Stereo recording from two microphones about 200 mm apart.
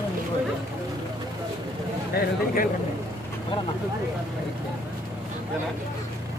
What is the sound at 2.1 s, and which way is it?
Speech, 45° left (ahead or behind).